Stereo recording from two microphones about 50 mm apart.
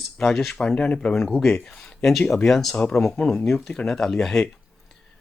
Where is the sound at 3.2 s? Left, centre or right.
Centre.